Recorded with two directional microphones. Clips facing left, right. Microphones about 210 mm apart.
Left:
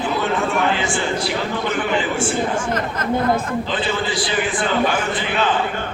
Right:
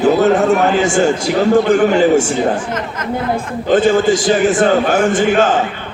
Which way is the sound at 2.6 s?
35° left (ahead or behind).